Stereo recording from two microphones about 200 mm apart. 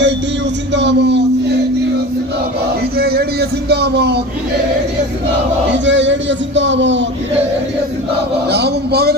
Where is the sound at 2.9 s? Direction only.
50° right (ahead or behind).